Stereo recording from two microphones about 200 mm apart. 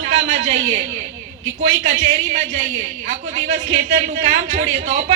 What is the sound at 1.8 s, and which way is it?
A woman's voice, 40° right (ahead or behind).